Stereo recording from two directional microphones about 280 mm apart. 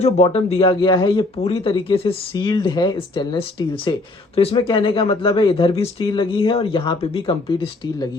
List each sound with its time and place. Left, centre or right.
0.0 s speech: left